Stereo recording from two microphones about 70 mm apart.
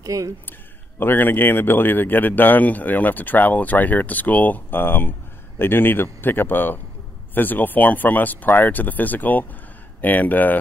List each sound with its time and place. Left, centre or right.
0.0 s speech: right
0.5 s speech: left